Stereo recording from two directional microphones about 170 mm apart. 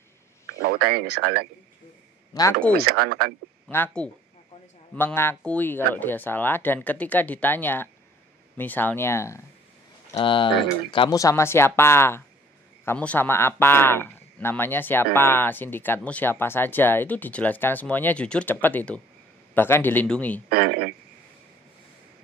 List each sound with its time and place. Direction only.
0.7 s speech: 70° right (ahead or behind)
2.7 s speech: 65° right (ahead or behind)
3.6 s speech: 10° left (ahead or behind)
10.1 s speech: 30° left (ahead or behind); by 20.4 s 10° left (ahead or behind)
20.4 s speech: 60° right (ahead or behind)